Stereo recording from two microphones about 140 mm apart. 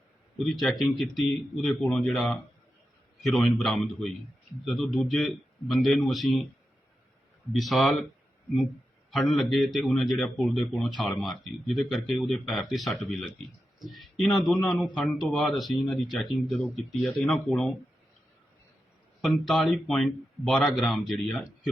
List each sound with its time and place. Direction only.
0.3 s a man's voice: 5° left (ahead or behind)
7.5 s a man's voice: centre (ahead or behind)
9.0 s a man's voice: centre (ahead or behind)
19.2 s a man's voice: centre (ahead or behind)